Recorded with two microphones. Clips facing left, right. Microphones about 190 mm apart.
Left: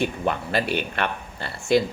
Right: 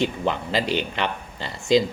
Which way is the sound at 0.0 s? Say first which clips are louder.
Right 1 dB; 20° right (ahead or behind).